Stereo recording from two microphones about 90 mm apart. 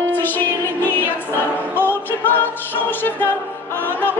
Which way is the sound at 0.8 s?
20° left (ahead or behind).